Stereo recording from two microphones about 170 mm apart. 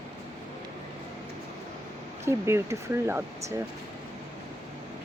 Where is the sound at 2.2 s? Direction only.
15° right (ahead or behind).